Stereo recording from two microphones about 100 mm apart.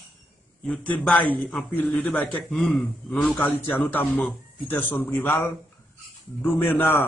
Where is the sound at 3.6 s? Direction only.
20° left (ahead or behind).